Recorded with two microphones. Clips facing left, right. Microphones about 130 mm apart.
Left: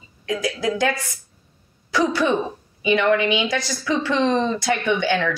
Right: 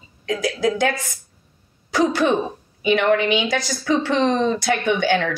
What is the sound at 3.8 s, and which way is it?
Speech, 50° right (ahead or behind).